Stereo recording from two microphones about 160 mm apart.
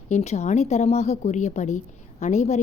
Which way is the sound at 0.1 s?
45° left (ahead or behind).